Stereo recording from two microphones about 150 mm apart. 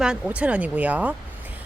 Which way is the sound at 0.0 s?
5° right (ahead or behind).